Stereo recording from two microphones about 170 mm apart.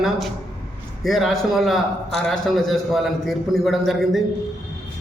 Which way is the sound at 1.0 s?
Centre (ahead or behind).